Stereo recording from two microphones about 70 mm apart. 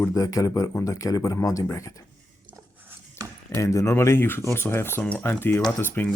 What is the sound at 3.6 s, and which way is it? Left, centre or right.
Speech, left.